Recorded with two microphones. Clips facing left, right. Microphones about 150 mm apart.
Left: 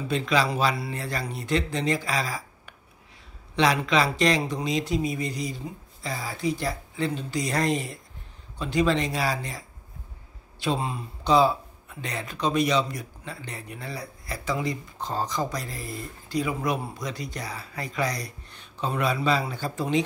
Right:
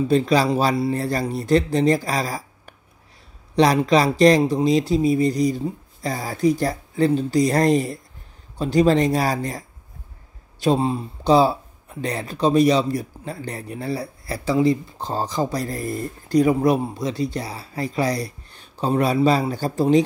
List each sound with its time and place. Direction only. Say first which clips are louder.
0.1 s speech: right 5 dB; 35° right (ahead or behind)